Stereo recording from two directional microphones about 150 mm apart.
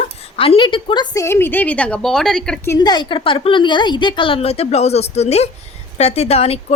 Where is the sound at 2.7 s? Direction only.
25° left (ahead or behind).